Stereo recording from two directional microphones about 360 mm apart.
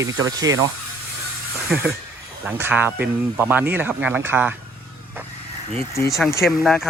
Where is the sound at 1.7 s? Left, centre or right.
Centre.